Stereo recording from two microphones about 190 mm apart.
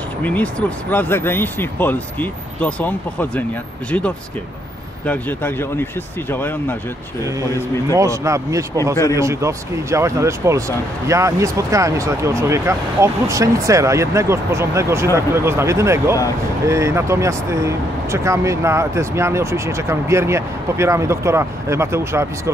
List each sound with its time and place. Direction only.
0.2 s speech: 5° left (ahead or behind)
5.0 s speech: 10° left (ahead or behind)
7.9 s speech: 15° right (ahead or behind)